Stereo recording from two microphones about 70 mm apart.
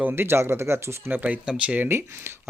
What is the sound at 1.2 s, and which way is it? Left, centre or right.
Speech, centre.